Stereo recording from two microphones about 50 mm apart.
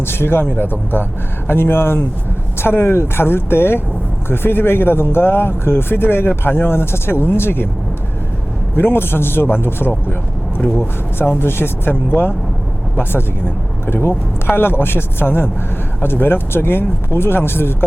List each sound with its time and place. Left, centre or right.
0.0 s speech: left
8.7 s speech: left
13.8 s speech: left